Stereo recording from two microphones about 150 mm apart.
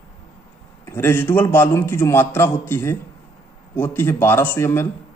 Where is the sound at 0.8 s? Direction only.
15° left (ahead or behind).